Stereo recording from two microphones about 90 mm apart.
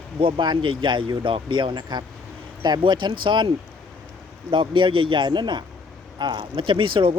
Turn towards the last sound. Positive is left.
turn(degrees=-70)  # may be behind; listen again after turning